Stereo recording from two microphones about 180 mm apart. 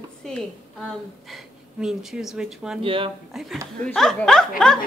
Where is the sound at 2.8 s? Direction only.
30° right (ahead or behind).